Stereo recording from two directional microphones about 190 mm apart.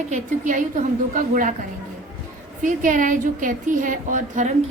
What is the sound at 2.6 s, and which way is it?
A woman's voice, 40° right (ahead or behind).